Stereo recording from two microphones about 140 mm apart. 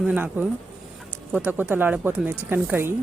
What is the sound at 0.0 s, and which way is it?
Speech, 10° right (ahead or behind).